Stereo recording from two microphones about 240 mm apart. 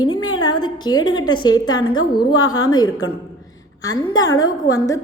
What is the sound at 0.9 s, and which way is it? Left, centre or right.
A woman's voice, centre.